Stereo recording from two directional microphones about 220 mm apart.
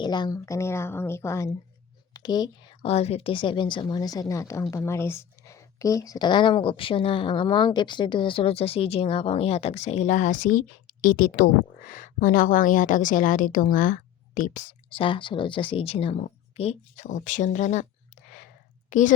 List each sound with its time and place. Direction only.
0.0 s a woman's voice: 20° left (ahead or behind); by 19.1 s 35° left (ahead or behind)